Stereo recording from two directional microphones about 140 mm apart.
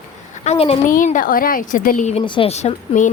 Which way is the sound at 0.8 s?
70° left (ahead or behind).